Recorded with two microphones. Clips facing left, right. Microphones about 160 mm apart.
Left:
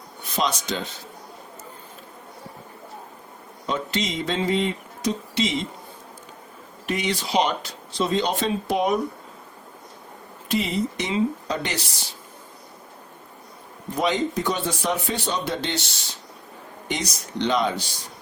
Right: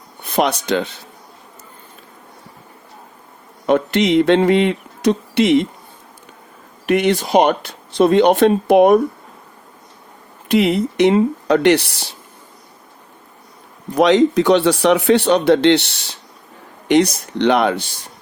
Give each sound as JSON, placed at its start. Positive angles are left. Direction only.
{"t": 0.3, "sound": "speech", "side_deg": -60}
{"t": 3.7, "sound": "speech", "side_deg": -60}
{"t": 6.8, "sound": "speech", "side_deg": -60}
{"t": 10.5, "sound": "speech", "side_deg": -65}
{"t": 13.9, "sound": "speech", "side_deg": -90}